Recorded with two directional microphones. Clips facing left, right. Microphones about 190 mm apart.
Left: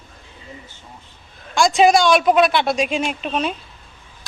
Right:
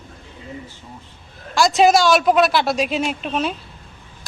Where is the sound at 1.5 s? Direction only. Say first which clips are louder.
Even; centre (ahead or behind).